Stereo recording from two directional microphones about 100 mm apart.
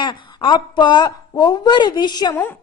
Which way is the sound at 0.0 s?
50° left (ahead or behind).